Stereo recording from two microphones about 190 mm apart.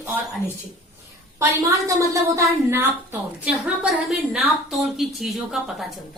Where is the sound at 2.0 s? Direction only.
15° right (ahead or behind).